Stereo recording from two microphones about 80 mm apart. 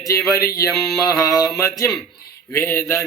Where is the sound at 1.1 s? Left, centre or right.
Left.